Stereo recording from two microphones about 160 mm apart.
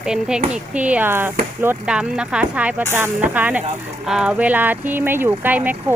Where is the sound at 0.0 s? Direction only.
5° right (ahead or behind).